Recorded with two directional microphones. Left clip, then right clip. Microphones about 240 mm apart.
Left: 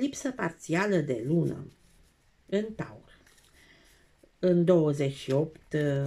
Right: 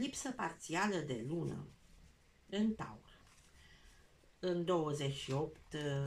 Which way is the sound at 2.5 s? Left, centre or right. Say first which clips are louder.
Left 9 dB; left.